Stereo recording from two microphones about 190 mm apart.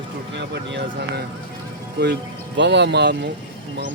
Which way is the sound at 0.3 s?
70° right (ahead or behind).